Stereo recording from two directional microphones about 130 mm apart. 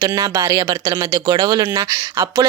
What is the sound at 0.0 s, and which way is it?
Speech, 30° right (ahead or behind).